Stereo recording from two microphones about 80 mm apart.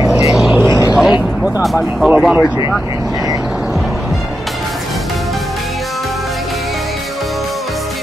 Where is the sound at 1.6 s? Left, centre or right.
Centre.